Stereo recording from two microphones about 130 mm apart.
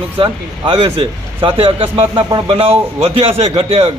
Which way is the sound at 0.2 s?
40° right (ahead or behind).